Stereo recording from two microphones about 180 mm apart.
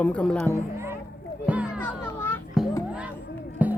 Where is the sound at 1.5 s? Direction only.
5° right (ahead or behind).